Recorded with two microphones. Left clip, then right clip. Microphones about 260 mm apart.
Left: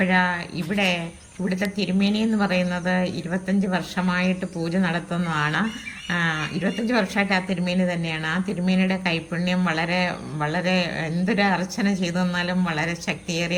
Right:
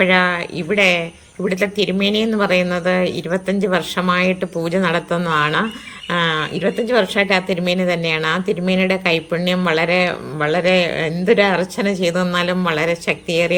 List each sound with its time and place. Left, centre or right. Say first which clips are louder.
0.0 s a woman's voice: right 7 dB; centre
6.1 s a sound: right 6 dB; centre
6.8 s a woman's voice: right 6 dB; centre